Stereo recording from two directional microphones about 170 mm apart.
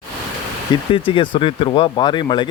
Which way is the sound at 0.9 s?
30° left (ahead or behind).